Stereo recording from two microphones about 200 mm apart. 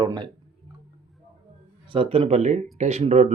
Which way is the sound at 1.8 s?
25° right (ahead or behind).